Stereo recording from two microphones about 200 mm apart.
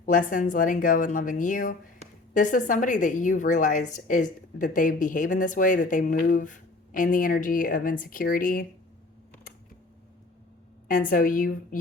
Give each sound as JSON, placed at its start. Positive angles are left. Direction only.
{"t": 0.0, "sound": "a woman's voice", "side_deg": 40}
{"t": 10.8, "sound": "a woman's voice", "side_deg": 45}